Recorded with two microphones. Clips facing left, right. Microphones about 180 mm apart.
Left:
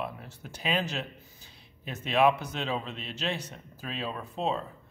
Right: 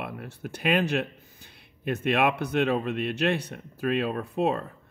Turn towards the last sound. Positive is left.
turn(degrees=-60)  # may be behind; listen again after turning